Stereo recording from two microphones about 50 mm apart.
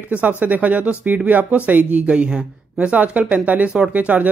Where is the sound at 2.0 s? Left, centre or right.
Right.